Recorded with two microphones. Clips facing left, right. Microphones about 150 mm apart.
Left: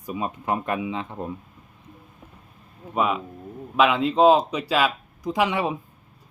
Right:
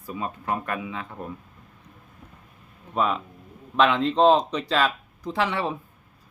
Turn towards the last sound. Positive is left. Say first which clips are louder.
# left 3 dB
turn(degrees=15)  # may be behind; listen again after turning